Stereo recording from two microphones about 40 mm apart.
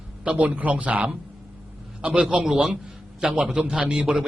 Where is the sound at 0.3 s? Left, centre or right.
Right.